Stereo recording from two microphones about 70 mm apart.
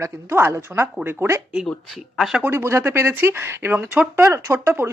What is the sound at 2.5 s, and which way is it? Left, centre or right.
Speech, right.